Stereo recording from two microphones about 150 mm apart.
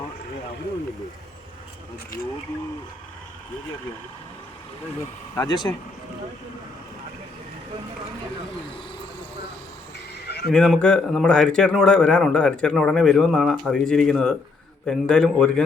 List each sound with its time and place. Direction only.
5.3 s speech: 25° left (ahead or behind)
10.2 s a sound: 90° left
10.5 s speech: 5° left (ahead or behind)